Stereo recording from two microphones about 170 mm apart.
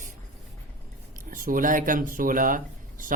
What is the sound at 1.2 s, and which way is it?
Speech, 55° right (ahead or behind).